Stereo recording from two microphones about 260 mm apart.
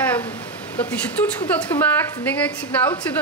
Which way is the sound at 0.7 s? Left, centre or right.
Centre.